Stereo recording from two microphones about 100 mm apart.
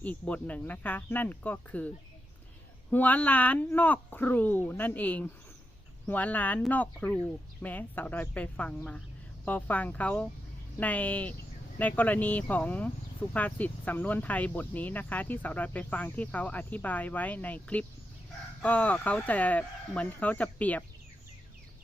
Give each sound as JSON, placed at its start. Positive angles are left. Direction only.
{"t": 0.0, "sound": "speech", "side_deg": 15}
{"t": 2.9, "sound": "speech", "side_deg": 15}